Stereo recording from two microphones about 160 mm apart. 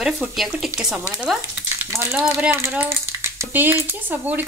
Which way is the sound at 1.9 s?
15° right (ahead or behind).